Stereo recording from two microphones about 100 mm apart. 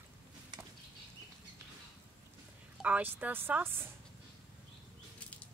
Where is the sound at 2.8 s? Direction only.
15° right (ahead or behind).